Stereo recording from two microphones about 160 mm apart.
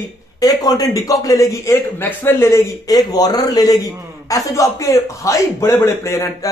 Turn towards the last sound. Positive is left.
turn(degrees=15)  # may be behind; listen again after turning